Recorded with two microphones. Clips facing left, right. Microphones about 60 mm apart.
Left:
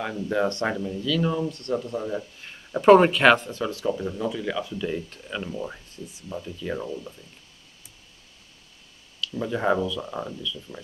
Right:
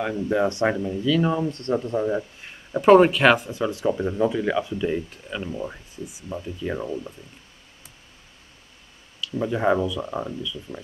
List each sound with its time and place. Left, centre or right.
0.0 s speech: centre
1.5 s speech: right
2.7 s speech: centre
3.7 s speech: right
9.2 s speech: centre